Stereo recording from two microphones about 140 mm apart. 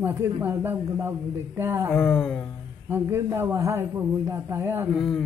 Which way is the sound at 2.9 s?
15° right (ahead or behind).